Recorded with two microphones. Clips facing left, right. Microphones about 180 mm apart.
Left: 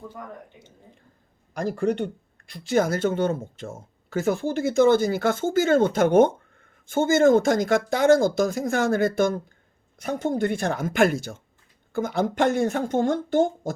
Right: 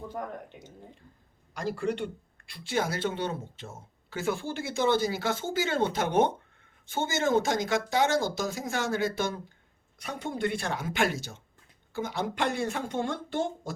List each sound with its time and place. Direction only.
1.5 s speech: 45° left (ahead or behind)